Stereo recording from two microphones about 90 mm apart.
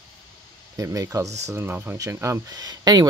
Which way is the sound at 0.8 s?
35° right (ahead or behind).